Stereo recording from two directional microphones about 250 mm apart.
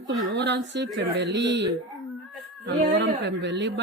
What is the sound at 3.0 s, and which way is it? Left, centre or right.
Speech, right.